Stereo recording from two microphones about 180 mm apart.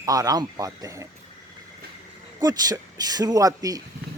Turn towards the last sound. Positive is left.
turn(degrees=-20)  # may be behind; listen again after turning